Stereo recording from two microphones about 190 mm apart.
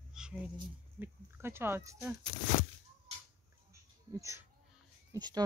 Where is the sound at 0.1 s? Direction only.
5° right (ahead or behind).